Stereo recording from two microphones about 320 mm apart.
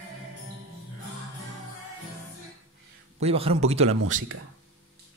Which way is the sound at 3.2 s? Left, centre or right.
Centre.